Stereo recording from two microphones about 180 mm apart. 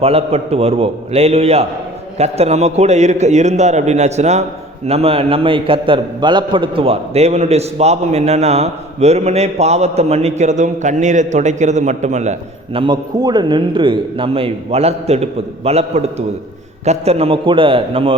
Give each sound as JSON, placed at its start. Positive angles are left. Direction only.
{"t": 0.0, "sound": "a man's voice", "side_deg": -35}